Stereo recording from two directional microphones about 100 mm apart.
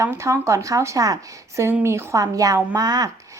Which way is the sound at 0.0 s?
30° right (ahead or behind).